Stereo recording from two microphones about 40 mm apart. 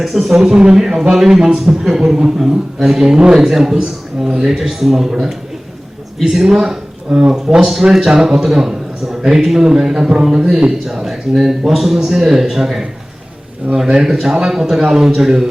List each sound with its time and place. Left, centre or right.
0.0 s a man's voice: centre
6.5 s a man's voice: centre
13.9 s a man's voice: centre